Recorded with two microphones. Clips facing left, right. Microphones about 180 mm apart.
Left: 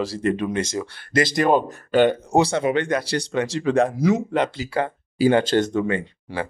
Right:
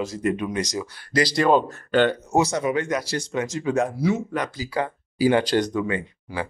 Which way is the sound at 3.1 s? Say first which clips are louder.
Left 3 dB; 70° left (ahead or behind).